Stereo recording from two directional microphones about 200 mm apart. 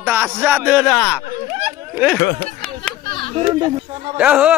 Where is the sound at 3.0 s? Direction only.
25° left (ahead or behind).